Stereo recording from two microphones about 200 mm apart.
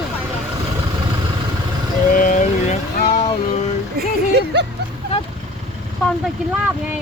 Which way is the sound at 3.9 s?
55° right (ahead or behind).